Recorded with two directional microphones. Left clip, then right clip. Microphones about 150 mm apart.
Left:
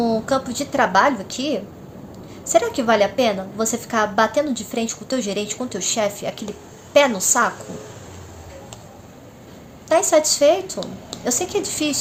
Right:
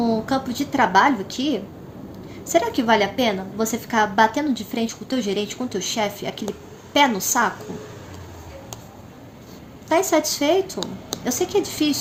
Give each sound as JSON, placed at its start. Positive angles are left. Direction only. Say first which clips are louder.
{"t": 0.0, "sound": "a woman's voice", "louder": "left 2 dB", "side_deg": 20}
{"t": 9.9, "sound": "a woman's voice", "louder": "left 3 dB", "side_deg": 20}